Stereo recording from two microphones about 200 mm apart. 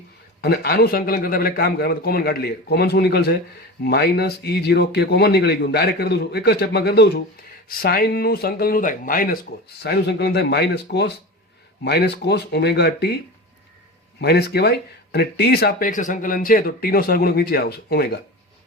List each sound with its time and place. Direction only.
0.4 s speech: 50° left (ahead or behind)
14.2 s speech: 55° left (ahead or behind)